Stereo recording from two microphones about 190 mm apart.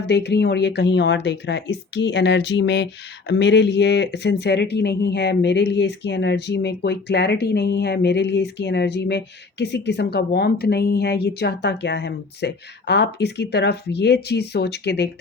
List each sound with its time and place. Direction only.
0.0 s speech: 60° left (ahead or behind)